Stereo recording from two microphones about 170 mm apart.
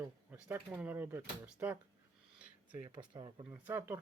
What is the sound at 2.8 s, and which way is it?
Speech, 30° right (ahead or behind).